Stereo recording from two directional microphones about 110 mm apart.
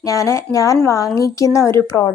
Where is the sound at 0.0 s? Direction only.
30° left (ahead or behind).